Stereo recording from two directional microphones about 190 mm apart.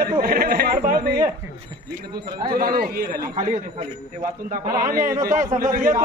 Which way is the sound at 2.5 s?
50° right (ahead or behind).